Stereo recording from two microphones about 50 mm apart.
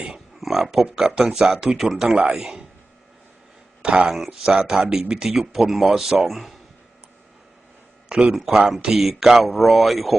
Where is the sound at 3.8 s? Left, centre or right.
Centre.